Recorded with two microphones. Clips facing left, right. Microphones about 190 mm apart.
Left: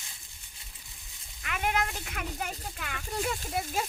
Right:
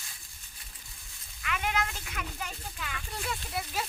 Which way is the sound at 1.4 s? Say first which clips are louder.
Left 2 dB; 40° left (ahead or behind).